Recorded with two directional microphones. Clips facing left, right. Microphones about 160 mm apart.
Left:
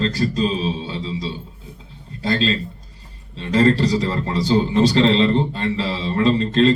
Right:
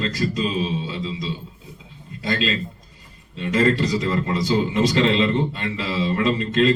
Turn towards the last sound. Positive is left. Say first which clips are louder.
# left 3 dB
turn(degrees=35)  # may be behind; listen again after turning